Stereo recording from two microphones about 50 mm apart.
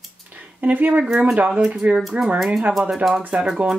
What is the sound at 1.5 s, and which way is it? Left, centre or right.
Speech, centre.